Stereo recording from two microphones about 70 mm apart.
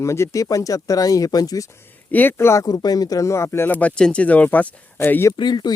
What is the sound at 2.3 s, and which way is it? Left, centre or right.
Speech, left.